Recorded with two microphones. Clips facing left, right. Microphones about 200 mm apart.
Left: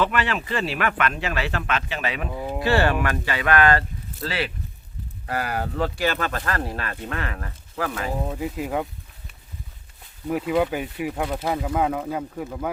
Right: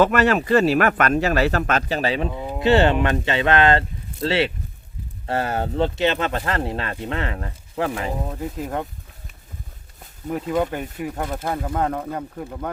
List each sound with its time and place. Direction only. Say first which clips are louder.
0.0 s speech: right 7 dB; 45° right (ahead or behind); by 8.1 s 25° right (ahead or behind)
8.2 s speech: left 1 dB; 5° left (ahead or behind)
10.2 s speech: left 1 dB; 5° left (ahead or behind)